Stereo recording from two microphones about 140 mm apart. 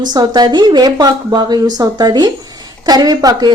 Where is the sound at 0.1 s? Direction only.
30° right (ahead or behind).